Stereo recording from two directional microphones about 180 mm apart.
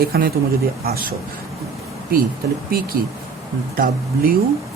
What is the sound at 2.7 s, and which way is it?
Speech, 55° right (ahead or behind).